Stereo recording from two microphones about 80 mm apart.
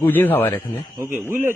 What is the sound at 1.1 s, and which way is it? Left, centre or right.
Speech, right.